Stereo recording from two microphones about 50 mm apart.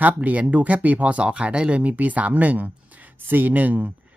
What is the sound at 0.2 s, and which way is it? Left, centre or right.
Speech, right.